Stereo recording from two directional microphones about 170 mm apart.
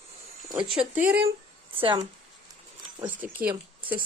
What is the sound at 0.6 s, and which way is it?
A woman's voice, 30° right (ahead or behind).